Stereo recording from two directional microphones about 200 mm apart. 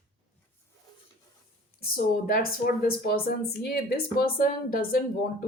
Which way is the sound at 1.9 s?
45° left (ahead or behind).